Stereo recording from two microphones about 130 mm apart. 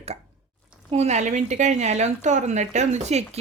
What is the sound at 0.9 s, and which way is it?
A woman's voice, 60° right (ahead or behind).